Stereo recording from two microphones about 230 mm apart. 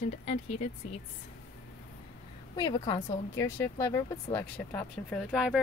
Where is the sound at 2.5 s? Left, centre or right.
Centre.